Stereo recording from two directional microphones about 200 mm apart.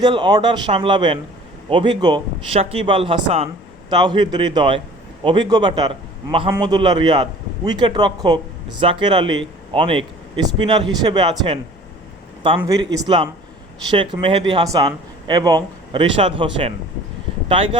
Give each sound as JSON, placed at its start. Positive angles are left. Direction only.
{"t": 0.0, "sound": "a man's voice", "side_deg": -20}